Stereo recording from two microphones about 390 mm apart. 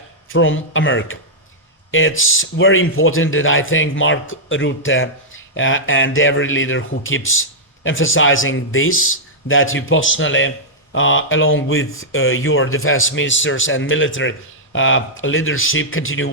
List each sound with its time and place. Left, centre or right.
0.3 s speech: left